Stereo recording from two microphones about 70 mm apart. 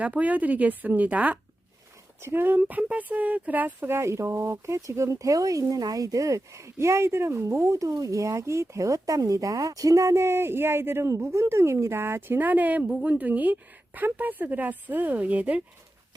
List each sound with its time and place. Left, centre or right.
0.0 s speech: right